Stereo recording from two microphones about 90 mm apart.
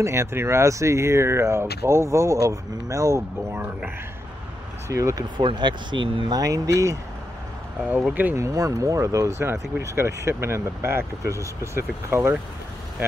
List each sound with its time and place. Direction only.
0.0 s speech: 30° right (ahead or behind)
3.5 s speech: 20° right (ahead or behind)
4.8 s speech: 35° right (ahead or behind)
5.4 s speech: 60° right (ahead or behind)
6.3 s speech: 40° right (ahead or behind)
7.8 s speech: 15° right (ahead or behind)
8.4 s speech: 35° right (ahead or behind)